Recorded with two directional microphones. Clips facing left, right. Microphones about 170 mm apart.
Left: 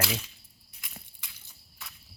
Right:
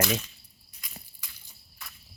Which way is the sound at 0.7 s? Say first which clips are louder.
Right 1 dB; centre (ahead or behind).